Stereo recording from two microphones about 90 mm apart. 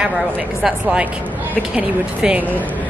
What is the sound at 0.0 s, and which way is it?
Speech, 5° right (ahead or behind).